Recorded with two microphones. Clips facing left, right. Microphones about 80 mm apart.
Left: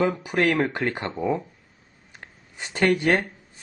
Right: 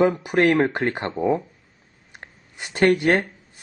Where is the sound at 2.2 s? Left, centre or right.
Centre.